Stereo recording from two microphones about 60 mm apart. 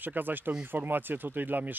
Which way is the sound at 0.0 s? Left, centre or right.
Right.